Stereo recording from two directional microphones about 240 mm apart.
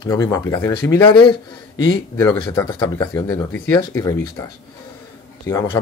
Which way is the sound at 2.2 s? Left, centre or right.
Centre.